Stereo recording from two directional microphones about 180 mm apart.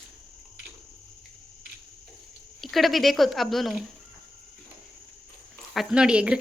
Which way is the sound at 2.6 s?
Centre (ahead or behind).